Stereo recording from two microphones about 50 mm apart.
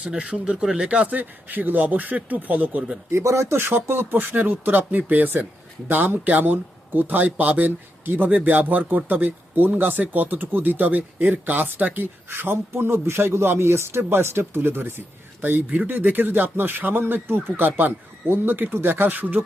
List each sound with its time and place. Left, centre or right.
0.1 s speech: right
1.1 s a man's voice: right
3.1 s a man's voice: right
3.6 s a man's voice: right
12.3 s a man's voice: right